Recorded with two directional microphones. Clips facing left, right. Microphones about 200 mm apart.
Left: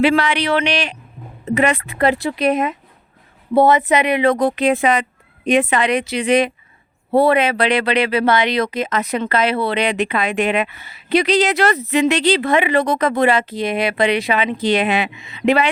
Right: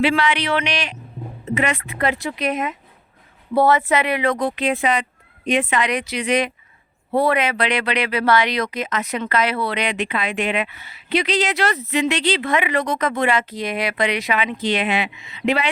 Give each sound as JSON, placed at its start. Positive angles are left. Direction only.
{"t": 0.0, "sound": "speech", "side_deg": 40}
{"t": 3.5, "sound": "speech", "side_deg": 20}
{"t": 4.3, "sound": "speech", "side_deg": 40}
{"t": 5.8, "sound": "speech", "side_deg": 25}